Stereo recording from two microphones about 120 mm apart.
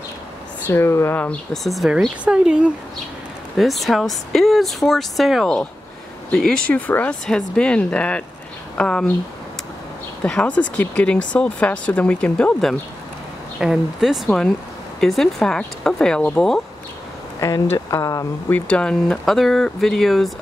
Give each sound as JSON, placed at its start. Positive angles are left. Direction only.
{"t": 0.7, "sound": "speech", "side_deg": 20}
{"t": 1.5, "sound": "speech", "side_deg": 0}
{"t": 10.2, "sound": "speech", "side_deg": 10}
{"t": 13.6, "sound": "speech", "side_deg": -5}
{"t": 17.4, "sound": "speech", "side_deg": 25}
{"t": 18.5, "sound": "speech", "side_deg": 10}